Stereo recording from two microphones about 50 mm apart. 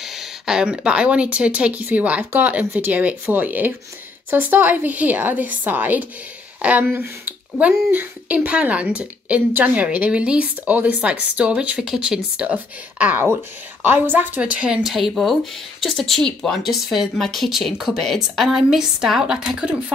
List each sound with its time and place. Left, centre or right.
0.0 s a sound: centre
0.6 s a woman's voice: centre
7.2 s a sound: right
7.9 s a woman's voice: right
11.8 s speech: centre
12.4 s a woman's voice: right
14.4 s speech: right
14.8 s speech: centre
16.6 s speech: centre